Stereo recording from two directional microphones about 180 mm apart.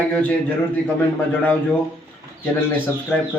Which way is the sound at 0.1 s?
10° left (ahead or behind).